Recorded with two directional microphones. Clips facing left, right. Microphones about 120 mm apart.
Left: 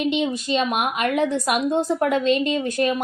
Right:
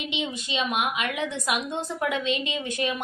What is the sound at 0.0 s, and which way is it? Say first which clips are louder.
A woman's voice: left 9 dB; 45° left (ahead or behind).